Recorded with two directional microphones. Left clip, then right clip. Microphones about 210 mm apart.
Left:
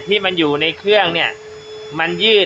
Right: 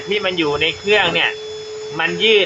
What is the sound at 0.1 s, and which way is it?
Speech, 40° left (ahead or behind).